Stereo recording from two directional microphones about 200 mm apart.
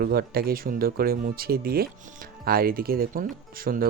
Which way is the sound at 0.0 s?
50° right (ahead or behind).